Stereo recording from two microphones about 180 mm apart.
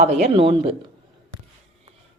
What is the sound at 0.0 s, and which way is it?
Speech, 40° right (ahead or behind).